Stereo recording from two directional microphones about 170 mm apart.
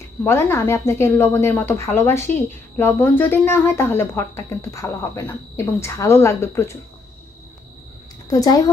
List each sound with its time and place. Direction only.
0.3 s a woman's voice: 15° left (ahead or behind)
8.3 s speech: 20° left (ahead or behind)